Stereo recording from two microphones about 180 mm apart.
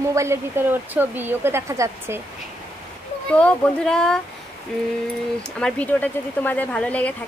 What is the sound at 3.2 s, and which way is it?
Speech, 5° left (ahead or behind).